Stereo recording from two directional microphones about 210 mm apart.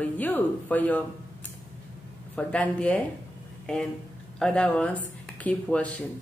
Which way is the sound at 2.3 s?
5° left (ahead or behind).